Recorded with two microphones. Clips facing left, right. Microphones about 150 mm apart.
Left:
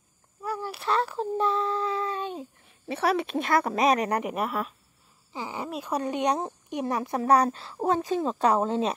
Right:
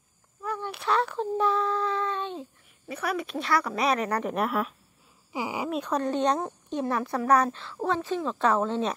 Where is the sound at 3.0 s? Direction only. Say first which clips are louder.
Left 5 dB; 70° left (ahead or behind); by 3.5 s 55° left (ahead or behind).